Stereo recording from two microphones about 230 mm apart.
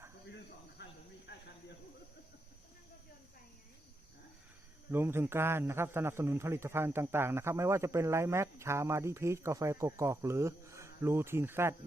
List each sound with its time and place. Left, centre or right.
0.8 s cricket: left
1.3 s snake: left
4.9 s a man's voice: centre